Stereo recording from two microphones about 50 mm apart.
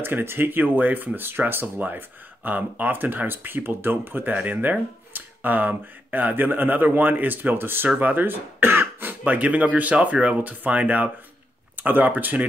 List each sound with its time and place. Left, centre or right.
0.0 s speech: right
1.8 s speech: right
8.0 s cough: right
9.2 s speech: right